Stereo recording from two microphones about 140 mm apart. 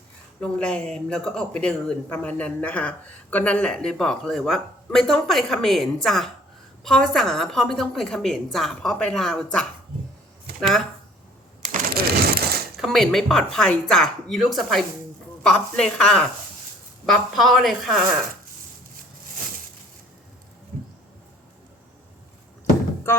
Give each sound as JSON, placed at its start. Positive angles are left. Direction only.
{"t": 0.3, "sound": "speech", "side_deg": 5}
{"t": 11.7, "sound": "a sound", "side_deg": -90}
{"t": 12.7, "sound": "speech", "side_deg": 0}